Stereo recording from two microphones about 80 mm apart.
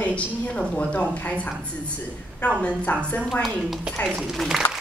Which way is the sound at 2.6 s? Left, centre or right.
Centre.